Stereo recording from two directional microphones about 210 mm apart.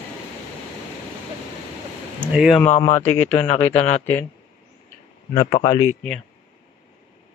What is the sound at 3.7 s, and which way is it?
Speech, 30° left (ahead or behind).